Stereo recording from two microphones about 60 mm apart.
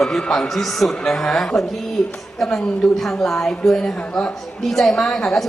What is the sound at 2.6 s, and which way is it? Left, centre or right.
A woman's voice, centre.